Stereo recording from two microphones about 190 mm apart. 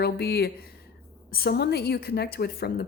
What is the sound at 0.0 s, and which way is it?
A woman's voice, 60° left (ahead or behind).